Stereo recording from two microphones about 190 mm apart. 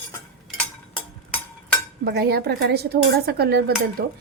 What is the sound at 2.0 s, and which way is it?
A woman's voice, 55° right (ahead or behind).